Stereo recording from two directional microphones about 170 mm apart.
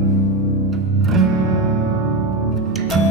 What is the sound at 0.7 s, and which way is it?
Music, centre (ahead or behind).